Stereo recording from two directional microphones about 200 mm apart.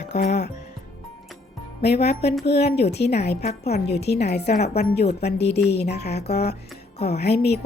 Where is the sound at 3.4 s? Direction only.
35° left (ahead or behind).